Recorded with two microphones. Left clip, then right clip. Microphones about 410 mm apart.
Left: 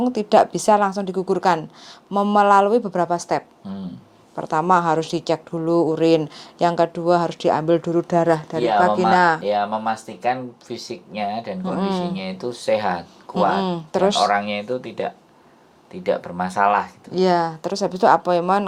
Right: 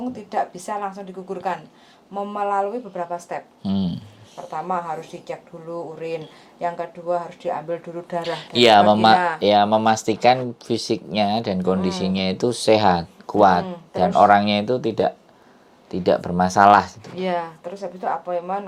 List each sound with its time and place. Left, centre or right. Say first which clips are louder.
0.0 s a woman's voice: left 9 dB; left
3.6 s speech: right 8 dB; right
4.5 s a woman's voice: left 9 dB; left
8.6 s speech: right 5 dB; right
9.1 s speech: left 3 dB; left
9.4 s speech: right 5 dB; right
17.2 s a woman's voice: left 7 dB; left